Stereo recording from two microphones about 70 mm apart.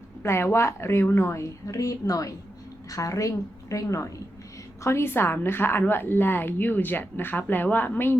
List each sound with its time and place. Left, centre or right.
0.2 s a woman's voice: left